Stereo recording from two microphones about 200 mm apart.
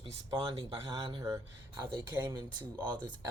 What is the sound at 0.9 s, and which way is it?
Speech, 20° right (ahead or behind).